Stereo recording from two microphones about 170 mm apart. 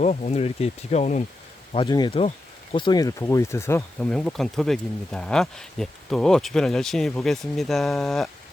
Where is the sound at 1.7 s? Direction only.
25° left (ahead or behind).